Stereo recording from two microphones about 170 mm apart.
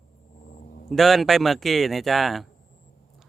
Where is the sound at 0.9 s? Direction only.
Centre (ahead or behind).